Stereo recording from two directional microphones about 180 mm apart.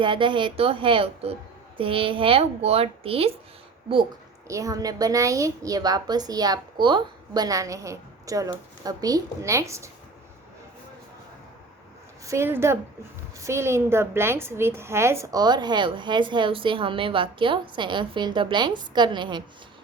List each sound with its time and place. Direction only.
0.0 s a woman's voice: 25° right (ahead or behind)
4.4 s a woman's voice: 20° right (ahead or behind)
12.2 s a woman's voice: 15° right (ahead or behind)